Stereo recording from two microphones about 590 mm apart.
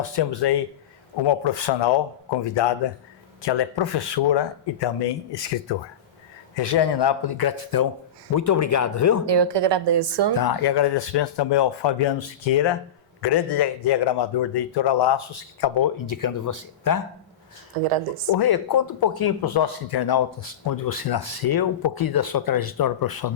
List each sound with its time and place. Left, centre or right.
0.2 s speech: left
9.2 s a woman's voice: right
10.3 s speech: left
18.3 s speech: left